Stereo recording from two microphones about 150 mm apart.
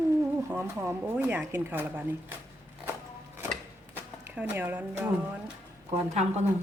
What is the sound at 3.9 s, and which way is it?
Speech, 10° right (ahead or behind).